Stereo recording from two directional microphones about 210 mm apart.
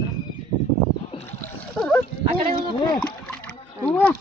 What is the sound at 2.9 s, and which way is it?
Splash, 5° left (ahead or behind).